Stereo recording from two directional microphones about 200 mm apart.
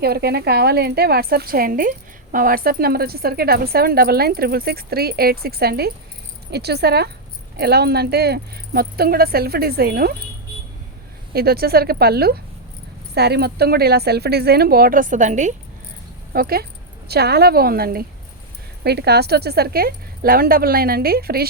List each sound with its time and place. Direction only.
0.0 s speech: 50° right (ahead or behind)
11.3 s speech: 50° right (ahead or behind)
16.3 s speech: 50° right (ahead or behind)